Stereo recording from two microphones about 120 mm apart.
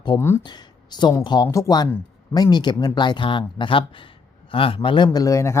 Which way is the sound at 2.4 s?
35° left (ahead or behind).